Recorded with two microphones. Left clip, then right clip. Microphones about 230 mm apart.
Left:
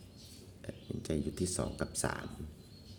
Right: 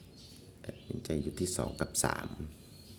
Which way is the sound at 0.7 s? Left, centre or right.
Centre.